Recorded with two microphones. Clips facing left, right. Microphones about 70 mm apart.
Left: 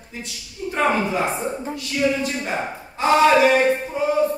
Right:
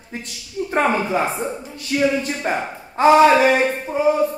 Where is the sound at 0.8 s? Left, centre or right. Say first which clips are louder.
Right 1 dB; right.